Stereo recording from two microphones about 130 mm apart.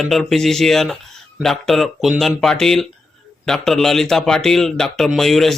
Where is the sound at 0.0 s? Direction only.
Centre (ahead or behind).